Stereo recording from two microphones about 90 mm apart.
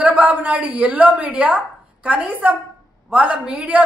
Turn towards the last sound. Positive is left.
turn(degrees=-15)  # may be behind; listen again after turning